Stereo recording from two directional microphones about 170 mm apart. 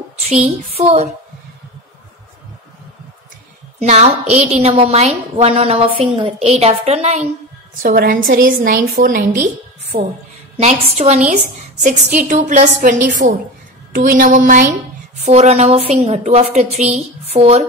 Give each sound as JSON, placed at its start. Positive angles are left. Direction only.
{"t": 0.3, "sound": "a woman's voice", "side_deg": -40}
{"t": 3.8, "sound": "a woman's voice", "side_deg": -40}
{"t": 7.8, "sound": "a woman's voice", "side_deg": -60}
{"t": 10.6, "sound": "a woman's voice", "side_deg": -40}